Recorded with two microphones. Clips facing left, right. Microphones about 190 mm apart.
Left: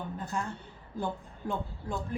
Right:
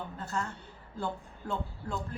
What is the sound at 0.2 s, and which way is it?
A woman's voice, 15° left (ahead or behind).